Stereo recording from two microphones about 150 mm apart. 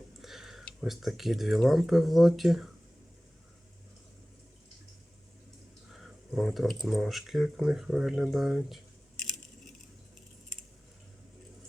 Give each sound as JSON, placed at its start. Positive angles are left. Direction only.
{"t": 0.2, "sound": "speech", "side_deg": 0}
{"t": 6.0, "sound": "speech", "side_deg": 0}